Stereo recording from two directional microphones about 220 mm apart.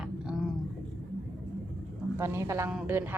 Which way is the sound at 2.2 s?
15° right (ahead or behind).